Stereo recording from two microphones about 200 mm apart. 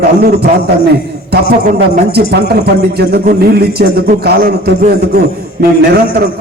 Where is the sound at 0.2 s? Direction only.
50° right (ahead or behind).